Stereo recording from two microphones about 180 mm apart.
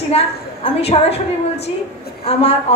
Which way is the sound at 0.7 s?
35° left (ahead or behind).